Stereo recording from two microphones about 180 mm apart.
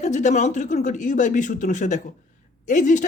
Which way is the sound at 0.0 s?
40° left (ahead or behind).